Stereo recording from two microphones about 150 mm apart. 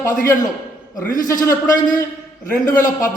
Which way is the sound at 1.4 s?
20° left (ahead or behind).